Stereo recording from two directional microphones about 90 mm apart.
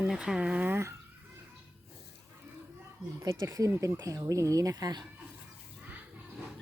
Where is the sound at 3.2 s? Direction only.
40° right (ahead or behind).